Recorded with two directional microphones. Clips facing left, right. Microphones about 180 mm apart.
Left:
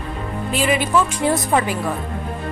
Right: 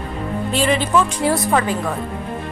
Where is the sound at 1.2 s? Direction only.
20° left (ahead or behind).